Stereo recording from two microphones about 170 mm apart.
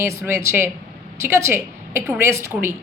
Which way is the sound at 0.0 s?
15° right (ahead or behind).